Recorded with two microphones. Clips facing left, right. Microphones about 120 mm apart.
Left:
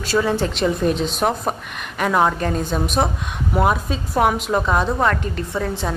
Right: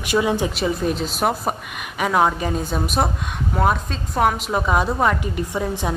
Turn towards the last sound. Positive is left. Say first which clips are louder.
# even
turn(degrees=-15)  # may be behind; listen again after turning